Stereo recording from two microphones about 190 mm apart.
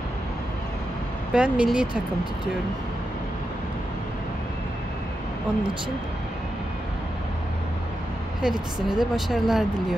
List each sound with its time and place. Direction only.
1.3 s speech: 5° right (ahead or behind)
8.4 s speech: centre (ahead or behind)